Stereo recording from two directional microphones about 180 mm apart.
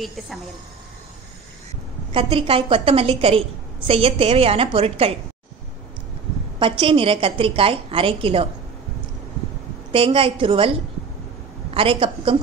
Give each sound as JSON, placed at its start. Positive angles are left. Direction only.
{"t": 0.0, "sound": "a woman's voice", "side_deg": 0}
{"t": 2.1, "sound": "a woman's voice", "side_deg": -30}
{"t": 6.8, "sound": "a woman's voice", "side_deg": -30}
{"t": 9.9, "sound": "a woman's voice", "side_deg": -30}